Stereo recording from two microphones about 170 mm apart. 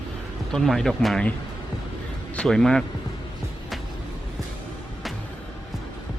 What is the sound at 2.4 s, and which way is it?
Speech, 5° left (ahead or behind).